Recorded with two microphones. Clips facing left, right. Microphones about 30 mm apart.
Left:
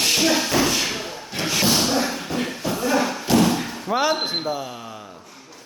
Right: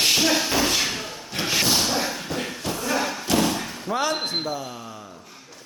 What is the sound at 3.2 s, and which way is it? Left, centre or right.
Slam, centre.